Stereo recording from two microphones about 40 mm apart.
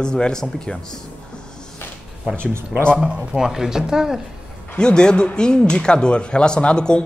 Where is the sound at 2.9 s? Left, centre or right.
Right.